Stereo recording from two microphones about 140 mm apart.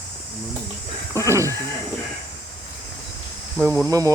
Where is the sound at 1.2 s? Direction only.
20° right (ahead or behind).